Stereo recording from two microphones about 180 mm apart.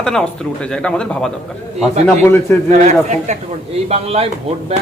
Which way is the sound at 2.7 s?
40° right (ahead or behind).